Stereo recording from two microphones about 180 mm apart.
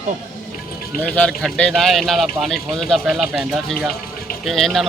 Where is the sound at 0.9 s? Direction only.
5° left (ahead or behind).